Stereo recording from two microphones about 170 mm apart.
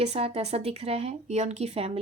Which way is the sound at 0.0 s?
35° right (ahead or behind).